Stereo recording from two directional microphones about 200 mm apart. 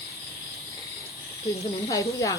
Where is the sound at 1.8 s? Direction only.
15° left (ahead or behind).